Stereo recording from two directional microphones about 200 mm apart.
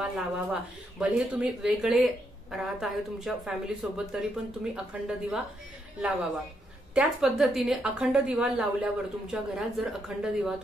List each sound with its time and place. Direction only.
0.0 s a woman's voice: 5° right (ahead or behind)
6.9 s a woman's voice: 5° right (ahead or behind)